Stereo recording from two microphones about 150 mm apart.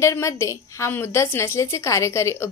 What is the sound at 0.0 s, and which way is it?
A woman's voice, 20° left (ahead or behind).